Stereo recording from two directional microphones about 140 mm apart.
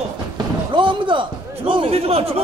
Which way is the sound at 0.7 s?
35° right (ahead or behind).